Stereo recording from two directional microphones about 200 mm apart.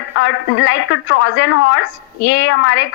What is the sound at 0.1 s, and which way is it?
A woman's voice, 70° left (ahead or behind).